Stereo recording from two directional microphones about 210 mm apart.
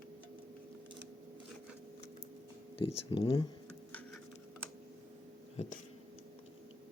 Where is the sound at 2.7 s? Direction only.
25° left (ahead or behind).